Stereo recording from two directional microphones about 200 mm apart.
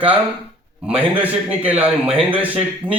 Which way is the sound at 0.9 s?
25° right (ahead or behind).